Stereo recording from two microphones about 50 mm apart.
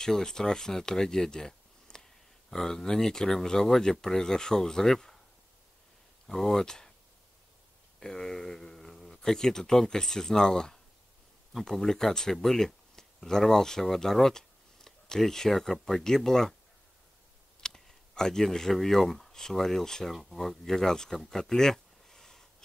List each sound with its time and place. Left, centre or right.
0.0 s speech: centre
6.2 s speech: centre
8.0 s speech: centre
17.6 s speech: centre
21.2 s a sound: centre